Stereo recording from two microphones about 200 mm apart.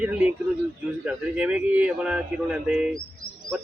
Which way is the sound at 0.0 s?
5° right (ahead or behind).